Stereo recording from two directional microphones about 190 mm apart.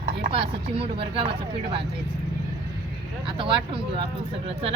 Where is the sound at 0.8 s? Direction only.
30° right (ahead or behind).